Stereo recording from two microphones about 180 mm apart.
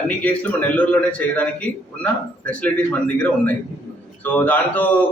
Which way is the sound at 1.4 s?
10° left (ahead or behind).